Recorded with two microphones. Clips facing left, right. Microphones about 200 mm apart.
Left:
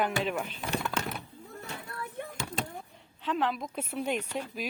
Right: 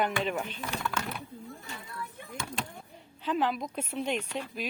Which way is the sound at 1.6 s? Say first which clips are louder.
Left 1 dB; 65° left (ahead or behind).